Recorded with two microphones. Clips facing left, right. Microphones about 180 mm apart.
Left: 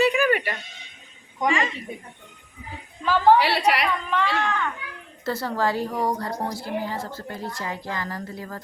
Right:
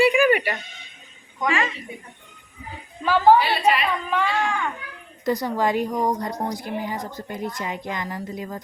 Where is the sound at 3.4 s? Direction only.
75° left (ahead or behind).